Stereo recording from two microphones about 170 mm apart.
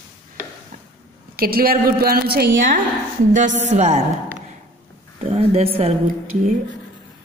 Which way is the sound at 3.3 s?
45° right (ahead or behind).